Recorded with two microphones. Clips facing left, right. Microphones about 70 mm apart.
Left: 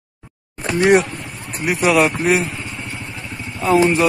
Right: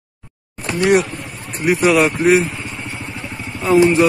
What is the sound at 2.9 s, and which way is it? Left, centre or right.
Vehicle, centre.